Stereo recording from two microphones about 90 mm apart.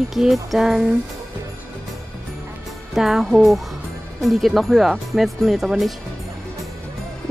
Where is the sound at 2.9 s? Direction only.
5° right (ahead or behind).